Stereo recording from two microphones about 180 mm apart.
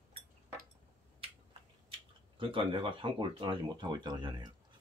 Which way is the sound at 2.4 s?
30° right (ahead or behind).